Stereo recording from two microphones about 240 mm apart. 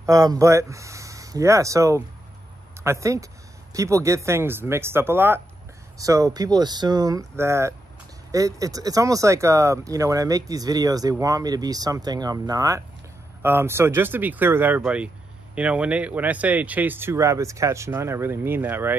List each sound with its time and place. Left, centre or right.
0.0 s speech: centre